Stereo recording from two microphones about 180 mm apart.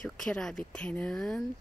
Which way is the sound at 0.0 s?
5° left (ahead or behind).